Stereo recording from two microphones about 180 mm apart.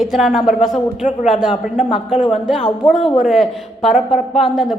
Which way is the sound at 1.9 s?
30° left (ahead or behind).